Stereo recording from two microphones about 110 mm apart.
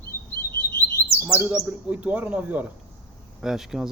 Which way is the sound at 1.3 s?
15° right (ahead or behind).